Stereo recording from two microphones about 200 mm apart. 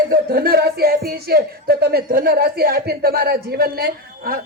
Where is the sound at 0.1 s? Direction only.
45° right (ahead or behind).